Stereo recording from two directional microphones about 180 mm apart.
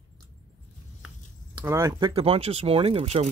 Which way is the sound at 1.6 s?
15° right (ahead or behind).